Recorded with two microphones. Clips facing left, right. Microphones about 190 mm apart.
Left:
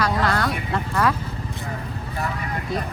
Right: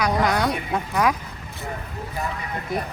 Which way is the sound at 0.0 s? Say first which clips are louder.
Right 1 dB; 15° right (ahead or behind).